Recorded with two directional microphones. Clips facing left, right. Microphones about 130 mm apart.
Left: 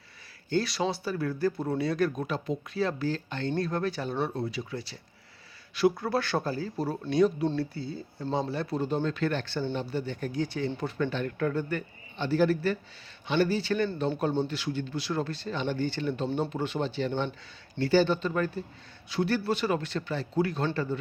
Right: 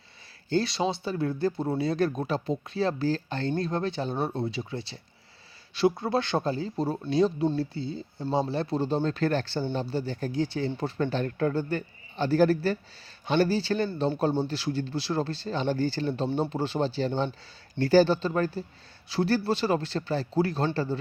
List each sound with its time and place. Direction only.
0.5 s speech: 25° right (ahead or behind)